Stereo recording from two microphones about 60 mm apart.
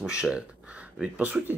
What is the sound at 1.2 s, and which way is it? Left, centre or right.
Speech, right.